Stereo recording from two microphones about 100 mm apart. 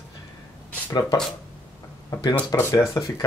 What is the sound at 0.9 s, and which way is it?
Speech, 40° left (ahead or behind).